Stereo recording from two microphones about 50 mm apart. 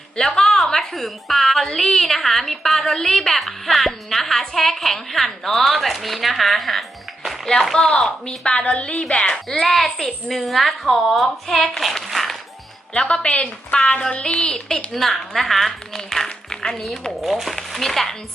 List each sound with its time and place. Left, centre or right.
0.2 s a woman's voice: centre
9.5 s a woman's voice: centre
12.9 s a woman's voice: centre
14.9 s a woman's voice: centre
17.2 s a woman's voice: centre